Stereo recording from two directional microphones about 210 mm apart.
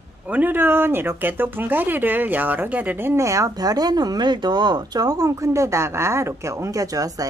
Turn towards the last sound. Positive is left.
turn(degrees=-15)  # may be behind; listen again after turning